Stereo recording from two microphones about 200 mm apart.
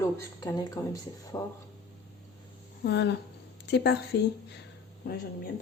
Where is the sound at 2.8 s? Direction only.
55° left (ahead or behind).